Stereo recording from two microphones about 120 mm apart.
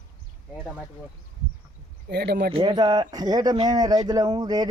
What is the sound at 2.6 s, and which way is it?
Speech, 35° right (ahead or behind).